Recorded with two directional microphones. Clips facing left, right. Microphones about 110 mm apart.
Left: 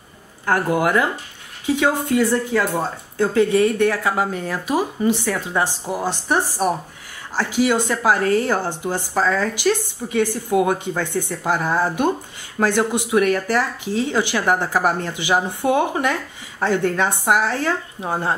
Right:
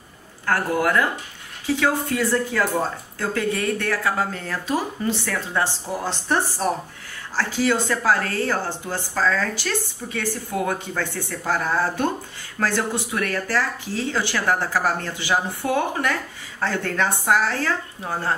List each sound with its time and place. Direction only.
0.5 s speech: 20° left (ahead or behind)